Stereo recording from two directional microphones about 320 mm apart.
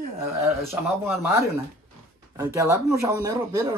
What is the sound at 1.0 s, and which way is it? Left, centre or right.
Speech, centre.